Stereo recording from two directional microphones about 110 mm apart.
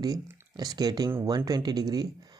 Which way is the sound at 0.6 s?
35° right (ahead or behind).